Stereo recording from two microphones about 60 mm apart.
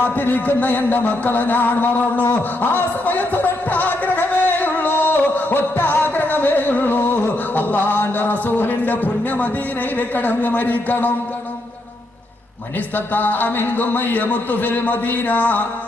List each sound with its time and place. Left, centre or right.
0.0 s a sound: left
10.0 s speech: left
13.1 s a man's voice: left